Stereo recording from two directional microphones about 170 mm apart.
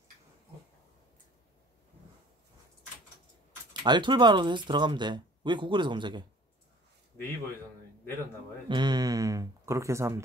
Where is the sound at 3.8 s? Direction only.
25° right (ahead or behind).